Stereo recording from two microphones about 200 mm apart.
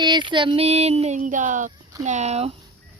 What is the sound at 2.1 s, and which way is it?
Speech, 35° right (ahead or behind).